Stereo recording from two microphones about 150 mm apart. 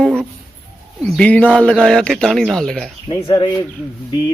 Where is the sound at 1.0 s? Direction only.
5° left (ahead or behind).